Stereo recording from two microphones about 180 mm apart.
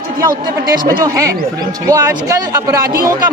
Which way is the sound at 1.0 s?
20° right (ahead or behind).